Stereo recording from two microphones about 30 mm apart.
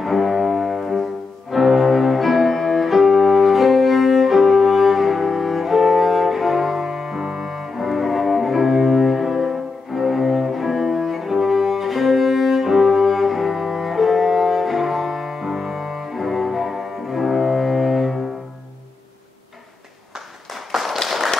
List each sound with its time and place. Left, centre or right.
0.0 s music: centre
7.8 s cello: centre
20.7 s tap: centre